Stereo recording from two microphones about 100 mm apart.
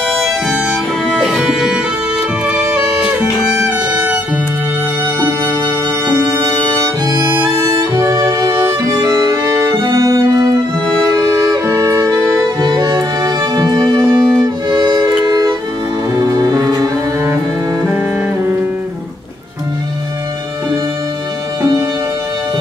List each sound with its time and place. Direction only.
0.2 s music: centre (ahead or behind); by 4.2 s 15° right (ahead or behind)
6.0 s music: 30° right (ahead or behind)
8.9 s music: 40° right (ahead or behind)
12.5 s music: 45° right (ahead or behind)